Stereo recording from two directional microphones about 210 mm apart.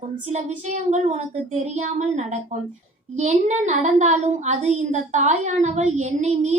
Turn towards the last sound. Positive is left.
turn(degrees=-30)  # may be behind; listen again after turning